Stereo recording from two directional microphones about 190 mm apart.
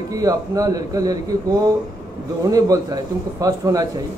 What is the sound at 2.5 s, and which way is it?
Speech, 20° right (ahead or behind).